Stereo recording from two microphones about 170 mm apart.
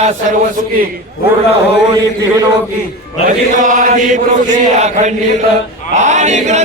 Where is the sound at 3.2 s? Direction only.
50° right (ahead or behind).